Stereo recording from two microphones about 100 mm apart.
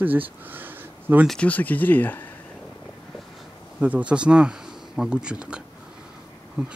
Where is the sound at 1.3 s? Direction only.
15° left (ahead or behind).